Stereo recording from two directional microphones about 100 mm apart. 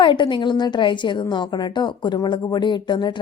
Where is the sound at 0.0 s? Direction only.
55° left (ahead or behind).